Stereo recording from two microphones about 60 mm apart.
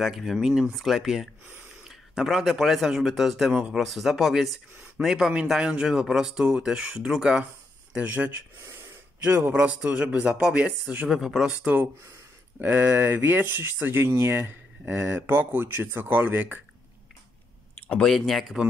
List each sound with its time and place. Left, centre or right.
0.0 s a man's voice: centre; by 11.1 s right
11.1 s speech: centre
11.5 s a man's voice: right
14.0 s speech: right
14.9 s a man's voice: right
15.1 s speech: right
18.0 s a man's voice: centre